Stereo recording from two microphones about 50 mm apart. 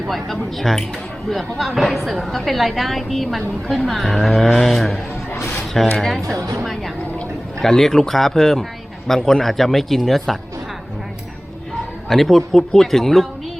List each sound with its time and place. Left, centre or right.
0.1 s a woman's voice: centre
5.3 s a sound: left
6.0 s speech: centre
7.6 s a woman's voice: centre
12.0 s a woman's voice: centre